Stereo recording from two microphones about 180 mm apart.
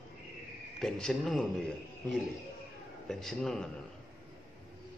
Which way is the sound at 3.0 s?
Centre (ahead or behind).